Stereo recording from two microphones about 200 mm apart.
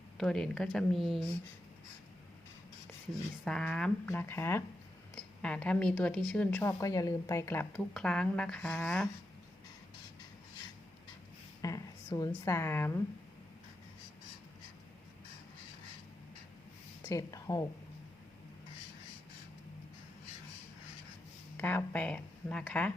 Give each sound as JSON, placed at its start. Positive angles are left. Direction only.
{"t": 0.2, "sound": "speech", "side_deg": 0}
{"t": 3.4, "sound": "speech", "side_deg": 5}
{"t": 11.6, "sound": "a sound", "side_deg": 15}
{"t": 12.3, "sound": "speech", "side_deg": 10}
{"t": 17.0, "sound": "speech", "side_deg": 15}
{"t": 21.6, "sound": "speech", "side_deg": 10}